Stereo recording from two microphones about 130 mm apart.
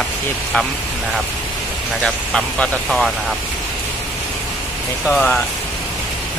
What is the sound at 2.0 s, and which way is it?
Speech, 5° left (ahead or behind).